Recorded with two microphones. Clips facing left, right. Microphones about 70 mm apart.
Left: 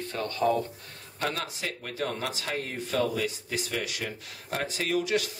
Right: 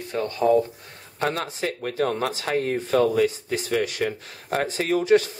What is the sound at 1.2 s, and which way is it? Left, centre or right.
Speech, right.